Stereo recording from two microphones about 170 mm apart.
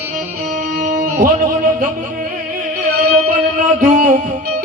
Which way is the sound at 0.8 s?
55° right (ahead or behind).